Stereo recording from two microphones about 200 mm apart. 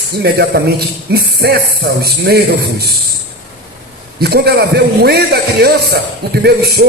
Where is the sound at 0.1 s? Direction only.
55° right (ahead or behind).